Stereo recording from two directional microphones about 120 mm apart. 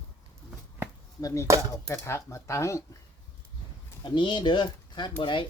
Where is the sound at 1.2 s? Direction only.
30° left (ahead or behind).